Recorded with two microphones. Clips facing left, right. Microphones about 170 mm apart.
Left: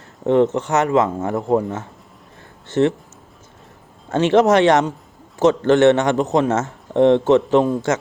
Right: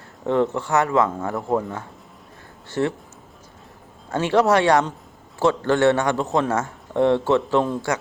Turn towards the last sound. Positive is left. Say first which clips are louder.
# left 5 dB
turn(degrees=20)  # may be behind; listen again after turning